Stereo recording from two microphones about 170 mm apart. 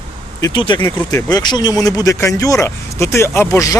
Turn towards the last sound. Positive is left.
turn(degrees=15)  # may be behind; listen again after turning